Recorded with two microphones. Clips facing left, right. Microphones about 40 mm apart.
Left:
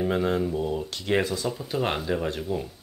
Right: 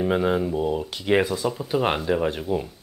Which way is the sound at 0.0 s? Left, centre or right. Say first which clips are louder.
Right 3 dB; centre.